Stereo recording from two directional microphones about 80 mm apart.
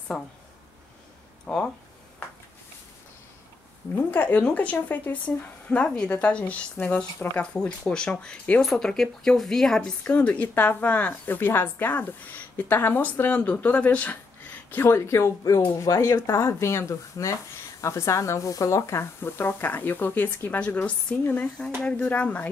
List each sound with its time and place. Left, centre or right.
0.1 s speech: centre
1.5 s speech: centre
3.9 s speech: left
14.7 s speech: left